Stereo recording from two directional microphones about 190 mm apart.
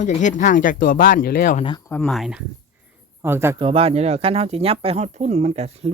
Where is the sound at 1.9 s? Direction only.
5° left (ahead or behind).